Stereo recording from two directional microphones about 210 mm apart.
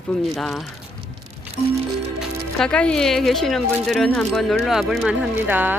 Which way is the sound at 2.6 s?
5° left (ahead or behind).